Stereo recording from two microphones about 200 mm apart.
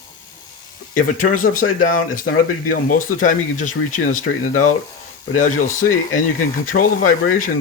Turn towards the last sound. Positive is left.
turn(degrees=45)  # may be behind; listen again after turning